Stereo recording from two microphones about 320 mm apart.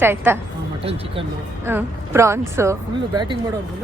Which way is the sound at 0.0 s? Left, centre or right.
Centre.